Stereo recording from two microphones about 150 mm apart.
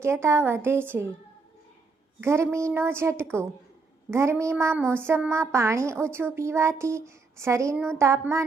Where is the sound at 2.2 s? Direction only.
15° right (ahead or behind).